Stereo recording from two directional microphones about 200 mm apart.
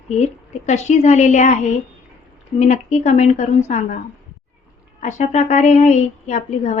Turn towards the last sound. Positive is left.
turn(degrees=35)  # may be behind; listen again after turning